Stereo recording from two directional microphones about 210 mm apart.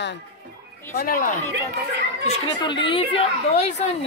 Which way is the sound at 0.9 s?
45° left (ahead or behind).